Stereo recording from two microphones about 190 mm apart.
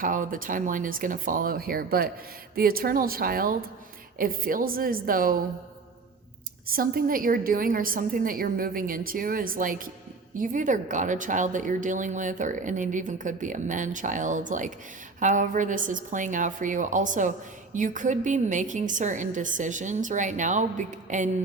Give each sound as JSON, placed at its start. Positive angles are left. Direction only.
{"t": 0.0, "sound": "a woman's voice", "side_deg": -45}
{"t": 6.7, "sound": "a woman's voice", "side_deg": -50}